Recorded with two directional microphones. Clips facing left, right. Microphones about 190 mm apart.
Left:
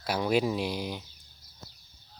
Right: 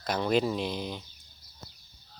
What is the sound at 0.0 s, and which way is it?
Speech, 10° left (ahead or behind).